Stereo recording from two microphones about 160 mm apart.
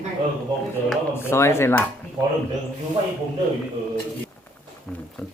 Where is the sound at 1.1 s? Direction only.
15° left (ahead or behind).